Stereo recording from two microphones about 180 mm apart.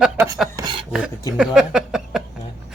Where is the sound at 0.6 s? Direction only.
25° right (ahead or behind).